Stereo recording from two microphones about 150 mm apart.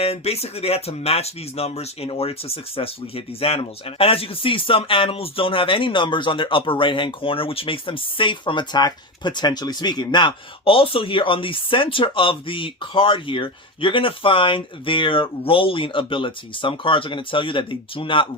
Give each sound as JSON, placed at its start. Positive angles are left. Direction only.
{"t": 0.0, "sound": "speech", "side_deg": 45}